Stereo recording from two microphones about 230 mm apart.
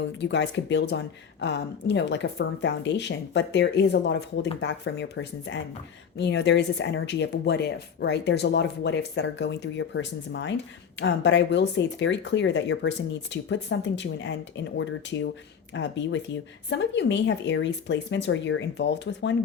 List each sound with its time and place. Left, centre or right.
0.2 s speech: left